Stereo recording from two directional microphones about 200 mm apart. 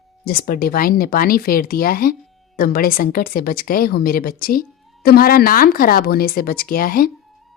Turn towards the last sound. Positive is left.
turn(degrees=45)  # may be behind; listen again after turning